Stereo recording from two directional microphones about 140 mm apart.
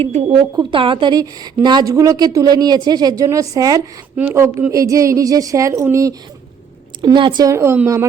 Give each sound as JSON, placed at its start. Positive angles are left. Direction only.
{"t": 0.0, "sound": "a woman's voice", "side_deg": -45}
{"t": 4.2, "sound": "a woman's voice", "side_deg": -15}
{"t": 7.0, "sound": "a woman's voice", "side_deg": -30}
{"t": 7.5, "sound": "a woman's voice", "side_deg": -15}